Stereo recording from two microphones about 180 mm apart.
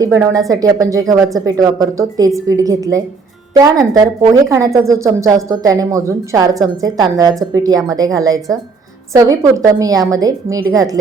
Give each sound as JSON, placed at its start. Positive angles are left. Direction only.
{"t": 0.0, "sound": "a woman's voice", "side_deg": -20}